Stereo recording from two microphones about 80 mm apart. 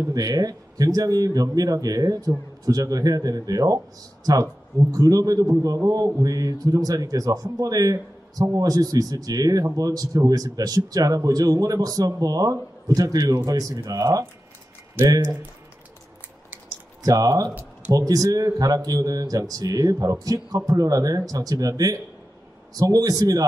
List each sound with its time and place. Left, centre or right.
0.1 s a man's voice: right
17.0 s a man's voice: right